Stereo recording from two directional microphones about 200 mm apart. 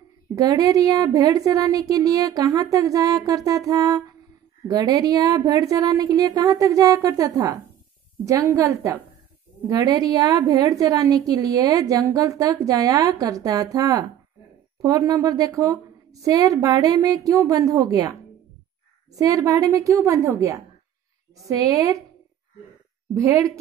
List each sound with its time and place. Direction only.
0.4 s a woman's voice: 20° right (ahead or behind)
19.1 s a woman's voice: 15° right (ahead or behind)
23.2 s a woman's voice: 15° right (ahead or behind)